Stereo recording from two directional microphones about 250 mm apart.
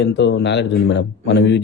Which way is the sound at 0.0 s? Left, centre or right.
Left.